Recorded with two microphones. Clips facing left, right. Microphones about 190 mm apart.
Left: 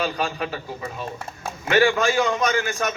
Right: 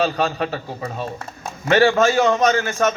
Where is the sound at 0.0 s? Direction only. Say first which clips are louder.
Right 5 dB; 40° right (ahead or behind).